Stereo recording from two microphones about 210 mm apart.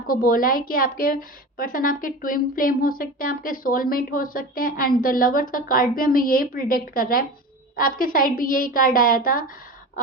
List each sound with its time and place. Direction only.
0.1 s a woman's voice: 40° left (ahead or behind)